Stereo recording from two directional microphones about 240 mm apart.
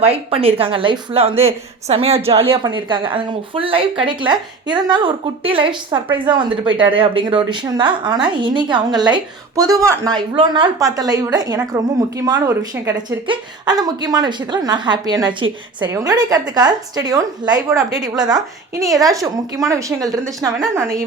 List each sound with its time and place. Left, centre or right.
0.0 s a woman's voice: right